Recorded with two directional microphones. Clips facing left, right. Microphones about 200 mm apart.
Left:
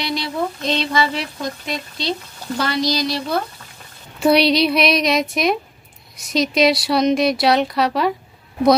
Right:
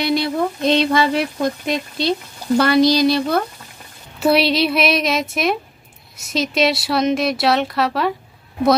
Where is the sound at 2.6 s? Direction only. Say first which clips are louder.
Right 7 dB; 60° right (ahead or behind).